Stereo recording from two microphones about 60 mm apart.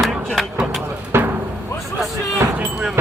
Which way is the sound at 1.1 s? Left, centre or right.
Right.